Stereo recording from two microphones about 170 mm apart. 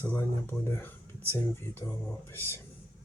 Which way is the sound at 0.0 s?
15° left (ahead or behind).